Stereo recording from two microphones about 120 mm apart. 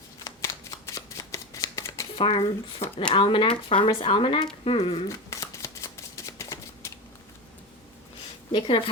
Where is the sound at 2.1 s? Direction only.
45° left (ahead or behind).